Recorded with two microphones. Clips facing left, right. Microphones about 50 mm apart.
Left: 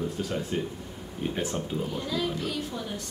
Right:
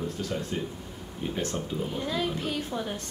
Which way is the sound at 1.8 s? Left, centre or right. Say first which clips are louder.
Even; right.